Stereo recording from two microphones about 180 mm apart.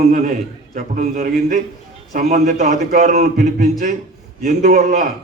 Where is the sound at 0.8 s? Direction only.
50° right (ahead or behind).